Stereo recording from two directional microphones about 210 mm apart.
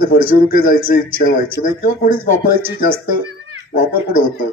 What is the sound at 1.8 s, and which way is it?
Speech, 40° left (ahead or behind).